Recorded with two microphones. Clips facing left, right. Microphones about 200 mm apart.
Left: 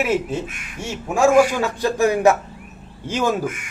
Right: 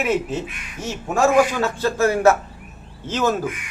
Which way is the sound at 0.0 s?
10° left (ahead or behind).